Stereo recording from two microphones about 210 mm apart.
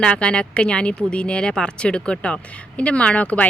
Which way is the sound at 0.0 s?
5° left (ahead or behind).